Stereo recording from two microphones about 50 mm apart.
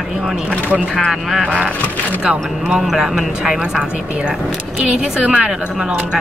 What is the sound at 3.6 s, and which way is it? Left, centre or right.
A woman's voice, right.